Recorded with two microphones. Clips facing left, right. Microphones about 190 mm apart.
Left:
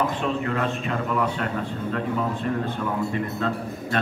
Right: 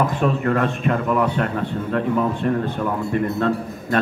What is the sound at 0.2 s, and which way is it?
A man's voice, 50° right (ahead or behind).